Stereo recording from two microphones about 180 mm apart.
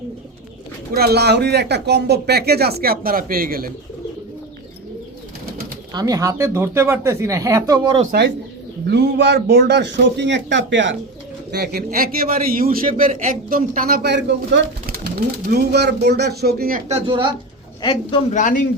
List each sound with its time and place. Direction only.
0.9 s a man's voice: 60° right (ahead or behind)
5.9 s speech: 20° right (ahead or behind)
8.9 s a man's voice: 60° right (ahead or behind); by 10.9 s 90° right
11.5 s a man's voice: 60° right (ahead or behind)
16.9 s speech: 25° right (ahead or behind)
17.8 s a man's voice: 35° left (ahead or behind)